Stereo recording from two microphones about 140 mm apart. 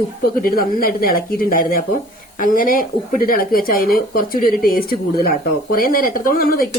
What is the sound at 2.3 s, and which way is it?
Speech, 80° left.